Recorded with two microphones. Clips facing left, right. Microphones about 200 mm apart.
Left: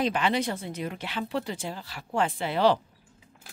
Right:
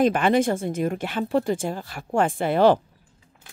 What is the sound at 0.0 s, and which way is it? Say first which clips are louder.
A woman's voice: right 7 dB; 50° right (ahead or behind).